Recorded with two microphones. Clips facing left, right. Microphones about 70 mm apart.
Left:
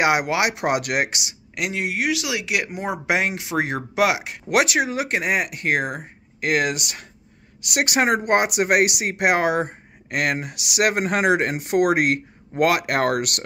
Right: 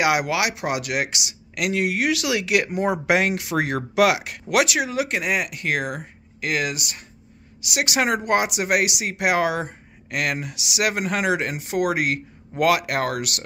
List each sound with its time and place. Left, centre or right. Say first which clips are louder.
0.0 s speech: left 1 dB; left
0.6 s speech: left 3 dB; left
1.5 s speech: right 3 dB; left
4.5 s speech: left 1 dB; left
6.4 s speech: left 3 dB; left
7.6 s speech: left 2 dB; left
12.5 s speech: left 1 dB; left